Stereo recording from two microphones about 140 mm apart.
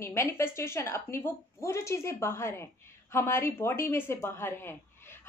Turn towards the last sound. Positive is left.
turn(degrees=15)  # may be behind; listen again after turning